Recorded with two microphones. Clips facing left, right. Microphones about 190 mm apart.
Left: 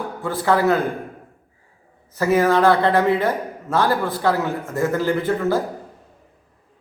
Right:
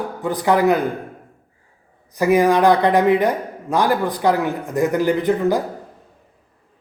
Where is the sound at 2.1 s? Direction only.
15° right (ahead or behind).